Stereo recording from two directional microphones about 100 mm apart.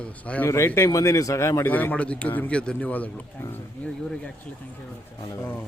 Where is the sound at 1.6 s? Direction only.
15° left (ahead or behind).